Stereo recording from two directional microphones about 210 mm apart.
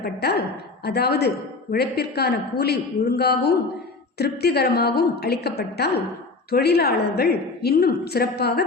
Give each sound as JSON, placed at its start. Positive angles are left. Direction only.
{"t": 0.0, "sound": "a woman's voice", "side_deg": 50}